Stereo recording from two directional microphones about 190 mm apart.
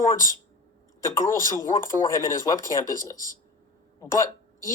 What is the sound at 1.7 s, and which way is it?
Speech, 45° left (ahead or behind).